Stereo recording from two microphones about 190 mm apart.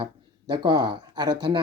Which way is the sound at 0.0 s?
25° right (ahead or behind).